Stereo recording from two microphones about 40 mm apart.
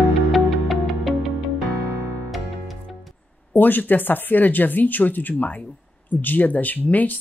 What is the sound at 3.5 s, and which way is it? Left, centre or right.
Speech, left.